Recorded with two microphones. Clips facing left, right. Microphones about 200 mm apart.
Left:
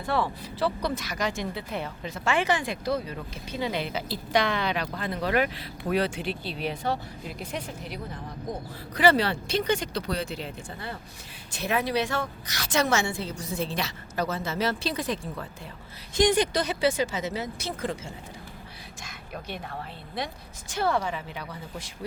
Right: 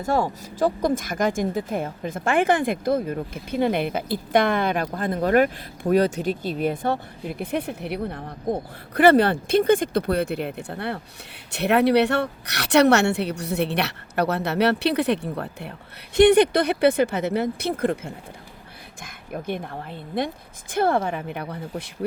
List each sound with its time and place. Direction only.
0.0 s a woman's voice: 45° right (ahead or behind)